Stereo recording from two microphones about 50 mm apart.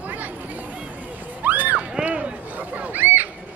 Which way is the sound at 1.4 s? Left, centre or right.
Right.